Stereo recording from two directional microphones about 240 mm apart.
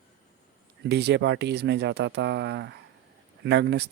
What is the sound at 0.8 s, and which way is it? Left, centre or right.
Speech, right.